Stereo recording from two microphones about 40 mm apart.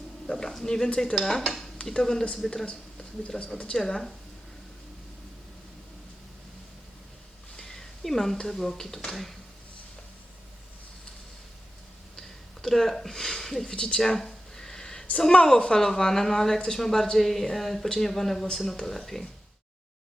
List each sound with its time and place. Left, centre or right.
0.3 s a woman's voice: centre
1.1 s dishes: centre
1.8 s a woman's voice: centre
7.5 s a sound: centre
8.4 s a woman's voice: centre
12.6 s a woman's voice: centre
13.7 s speech: left
14.0 s a woman's voice: centre
14.5 s a sound: centre
15.2 s a woman's voice: centre